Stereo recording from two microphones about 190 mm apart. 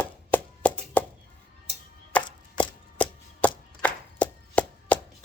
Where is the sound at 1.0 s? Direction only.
10° left (ahead or behind).